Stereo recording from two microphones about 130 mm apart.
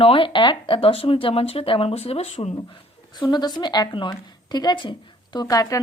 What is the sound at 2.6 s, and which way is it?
Speech, 35° left (ahead or behind).